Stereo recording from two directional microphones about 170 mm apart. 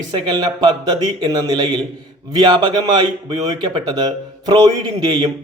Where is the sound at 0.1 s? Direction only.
20° right (ahead or behind).